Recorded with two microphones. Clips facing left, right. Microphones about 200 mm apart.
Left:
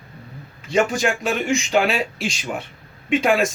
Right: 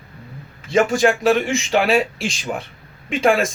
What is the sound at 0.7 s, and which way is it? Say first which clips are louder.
Speech: right 4 dB; centre (ahead or behind).